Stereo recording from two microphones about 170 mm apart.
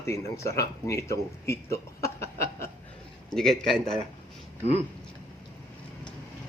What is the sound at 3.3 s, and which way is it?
Speech, centre (ahead or behind).